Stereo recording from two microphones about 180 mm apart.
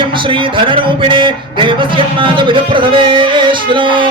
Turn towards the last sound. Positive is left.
turn(degrees=-25)  # may be behind; listen again after turning